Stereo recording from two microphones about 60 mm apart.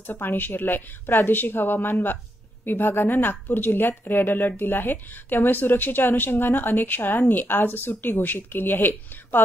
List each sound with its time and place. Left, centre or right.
0.0 s a woman's voice: left